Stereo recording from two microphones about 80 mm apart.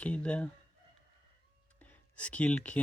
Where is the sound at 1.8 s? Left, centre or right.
Centre.